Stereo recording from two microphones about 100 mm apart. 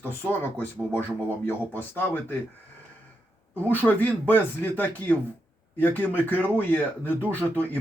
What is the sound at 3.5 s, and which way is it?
Speech, 20° left (ahead or behind).